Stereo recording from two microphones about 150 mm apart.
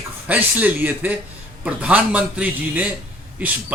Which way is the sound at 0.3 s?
10° right (ahead or behind).